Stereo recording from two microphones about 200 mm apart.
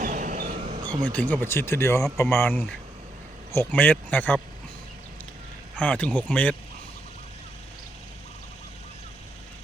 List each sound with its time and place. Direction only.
0.0 s a sound: 40° right (ahead or behind)
1.0 s speech: 5° left (ahead or behind)
5.7 s speech: 5° left (ahead or behind)